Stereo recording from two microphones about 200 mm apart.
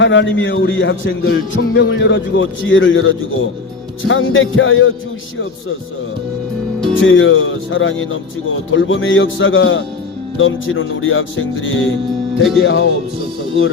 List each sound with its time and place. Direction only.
0.0 s speech: 65° left (ahead or behind)
7.0 s speech: 75° left (ahead or behind)
12.4 s speech: centre (ahead or behind)